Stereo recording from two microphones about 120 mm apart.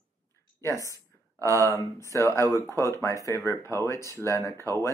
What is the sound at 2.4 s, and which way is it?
Speech, 25° right (ahead or behind).